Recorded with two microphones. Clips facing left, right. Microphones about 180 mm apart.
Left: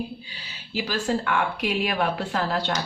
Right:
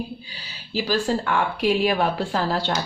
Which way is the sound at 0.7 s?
35° right (ahead or behind).